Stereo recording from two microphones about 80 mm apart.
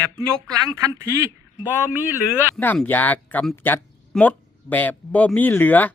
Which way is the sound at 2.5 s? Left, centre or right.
Left.